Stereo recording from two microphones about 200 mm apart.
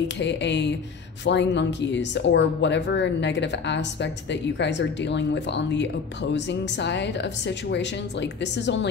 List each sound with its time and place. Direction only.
0.2 s speech: 60° left (ahead or behind)